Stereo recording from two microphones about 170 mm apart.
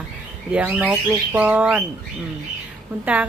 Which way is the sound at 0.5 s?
10° right (ahead or behind).